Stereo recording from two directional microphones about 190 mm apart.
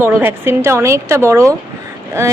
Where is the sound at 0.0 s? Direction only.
10° right (ahead or behind).